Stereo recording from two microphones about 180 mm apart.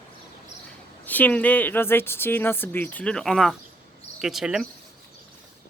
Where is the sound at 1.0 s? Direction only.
10° left (ahead or behind).